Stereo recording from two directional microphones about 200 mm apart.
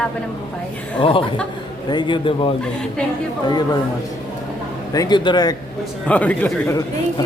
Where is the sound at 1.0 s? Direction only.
25° left (ahead or behind).